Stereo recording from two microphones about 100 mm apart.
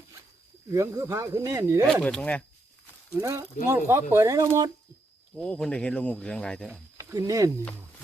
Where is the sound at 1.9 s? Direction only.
10° left (ahead or behind).